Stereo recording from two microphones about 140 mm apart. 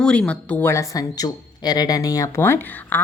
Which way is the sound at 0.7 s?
25° left (ahead or behind).